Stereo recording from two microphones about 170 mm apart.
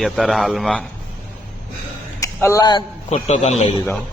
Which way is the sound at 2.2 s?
15° left (ahead or behind).